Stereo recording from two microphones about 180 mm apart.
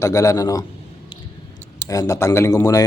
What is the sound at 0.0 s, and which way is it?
Speech, 20° left (ahead or behind).